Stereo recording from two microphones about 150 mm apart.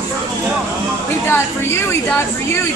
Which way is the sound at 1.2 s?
15° left (ahead or behind).